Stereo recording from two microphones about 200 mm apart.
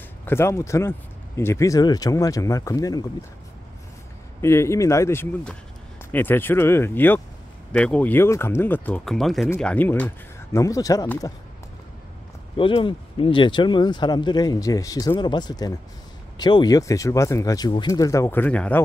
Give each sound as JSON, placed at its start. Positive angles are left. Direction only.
{"t": 0.2, "sound": "speech", "side_deg": 10}
{"t": 4.4, "sound": "speech", "side_deg": 15}
{"t": 12.5, "sound": "speech", "side_deg": 25}